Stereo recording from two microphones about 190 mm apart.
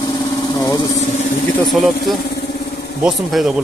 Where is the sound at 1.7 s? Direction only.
Centre (ahead or behind).